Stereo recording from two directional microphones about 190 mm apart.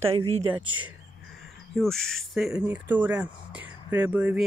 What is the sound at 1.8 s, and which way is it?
Speech, 5° left (ahead or behind).